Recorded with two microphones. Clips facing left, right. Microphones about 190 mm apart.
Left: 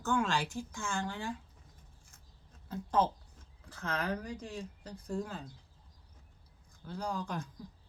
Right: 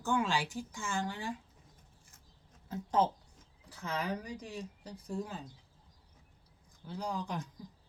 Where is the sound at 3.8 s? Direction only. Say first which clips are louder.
Left 1 dB; 55° left (ahead or behind).